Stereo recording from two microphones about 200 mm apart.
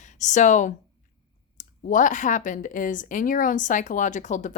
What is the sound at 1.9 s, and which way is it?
Speech, 40° left (ahead or behind).